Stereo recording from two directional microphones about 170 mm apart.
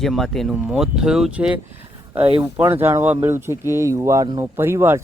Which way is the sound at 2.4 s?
15° right (ahead or behind).